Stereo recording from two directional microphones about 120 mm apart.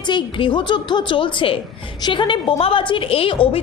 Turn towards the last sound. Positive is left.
turn(degrees=50)  # may be behind; listen again after turning